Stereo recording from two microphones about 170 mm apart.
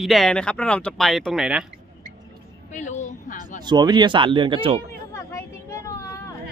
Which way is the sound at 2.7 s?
45° left (ahead or behind).